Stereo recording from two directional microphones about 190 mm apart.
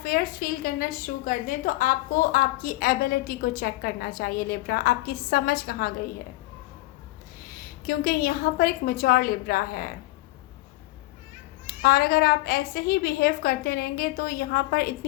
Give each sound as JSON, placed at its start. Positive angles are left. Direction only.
{"t": 0.0, "sound": "a woman's voice", "side_deg": 50}
{"t": 7.9, "sound": "a woman's voice", "side_deg": 50}
{"t": 11.6, "sound": "a woman's voice", "side_deg": 50}